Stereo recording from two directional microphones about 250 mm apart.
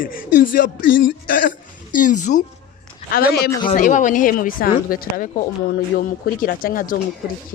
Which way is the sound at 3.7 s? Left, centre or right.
Left.